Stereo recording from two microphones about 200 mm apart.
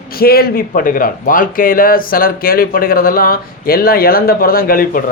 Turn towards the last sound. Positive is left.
turn(degrees=45)  # may be behind; listen again after turning